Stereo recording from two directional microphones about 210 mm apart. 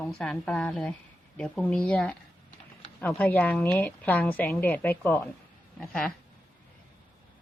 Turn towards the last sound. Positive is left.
turn(degrees=5)  # may be behind; listen again after turning